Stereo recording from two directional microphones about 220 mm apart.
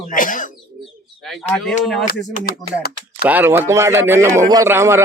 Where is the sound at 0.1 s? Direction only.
35° left (ahead or behind).